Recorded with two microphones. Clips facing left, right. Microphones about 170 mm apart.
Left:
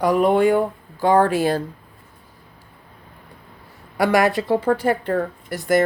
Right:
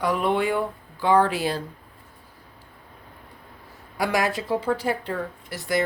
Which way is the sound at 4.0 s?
65° left (ahead or behind).